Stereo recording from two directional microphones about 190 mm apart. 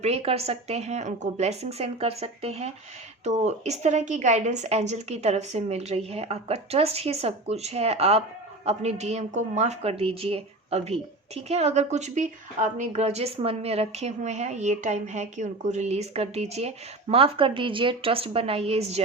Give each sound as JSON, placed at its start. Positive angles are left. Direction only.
{"t": 0.0, "sound": "a woman's voice", "side_deg": -35}